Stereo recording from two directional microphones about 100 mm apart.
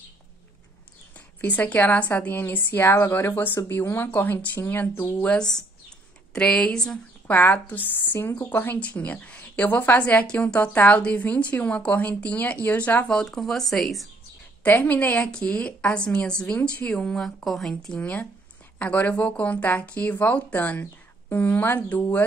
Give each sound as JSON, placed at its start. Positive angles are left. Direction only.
{"t": 1.4, "sound": "a woman's voice", "side_deg": 15}
{"t": 13.2, "sound": "speech", "side_deg": 5}
{"t": 14.6, "sound": "a woman's voice", "side_deg": 15}